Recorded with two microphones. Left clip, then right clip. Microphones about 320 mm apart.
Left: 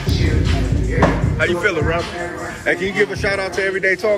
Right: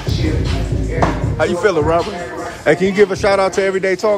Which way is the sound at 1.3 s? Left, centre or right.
Centre.